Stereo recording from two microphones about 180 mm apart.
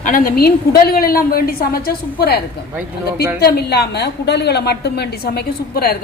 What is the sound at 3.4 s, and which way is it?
A woman's voice, 65° left (ahead or behind).